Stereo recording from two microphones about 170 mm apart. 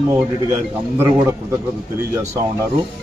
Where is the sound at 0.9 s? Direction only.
15° right (ahead or behind).